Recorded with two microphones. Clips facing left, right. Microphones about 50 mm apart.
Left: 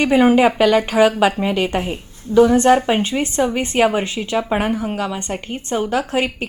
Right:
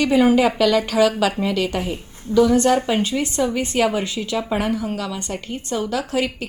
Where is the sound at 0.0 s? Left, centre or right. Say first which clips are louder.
Left 2 dB; left.